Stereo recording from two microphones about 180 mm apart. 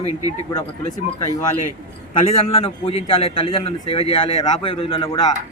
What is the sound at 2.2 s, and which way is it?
A man's voice, 30° left (ahead or behind).